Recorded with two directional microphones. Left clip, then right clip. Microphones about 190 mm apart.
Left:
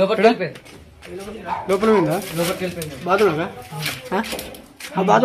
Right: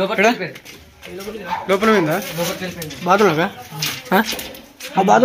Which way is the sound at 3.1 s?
35° right (ahead or behind).